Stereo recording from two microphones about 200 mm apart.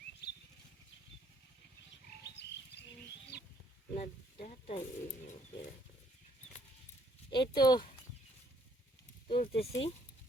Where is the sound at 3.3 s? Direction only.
55° left (ahead or behind).